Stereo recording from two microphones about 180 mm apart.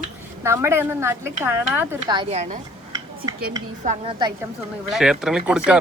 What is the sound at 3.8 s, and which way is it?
Speech, 45° right (ahead or behind).